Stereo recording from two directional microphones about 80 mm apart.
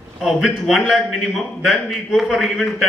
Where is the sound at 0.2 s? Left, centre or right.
Centre.